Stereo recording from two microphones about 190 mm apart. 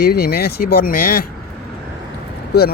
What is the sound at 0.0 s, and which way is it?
Speech, 55° left (ahead or behind).